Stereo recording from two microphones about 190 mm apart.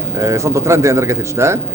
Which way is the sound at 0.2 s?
15° right (ahead or behind).